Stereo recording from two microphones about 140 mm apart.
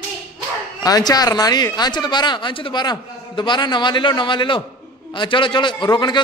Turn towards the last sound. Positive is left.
turn(degrees=35)  # may be behind; listen again after turning